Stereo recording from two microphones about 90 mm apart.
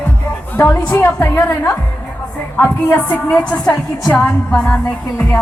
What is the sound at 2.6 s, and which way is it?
Speech, 20° left (ahead or behind).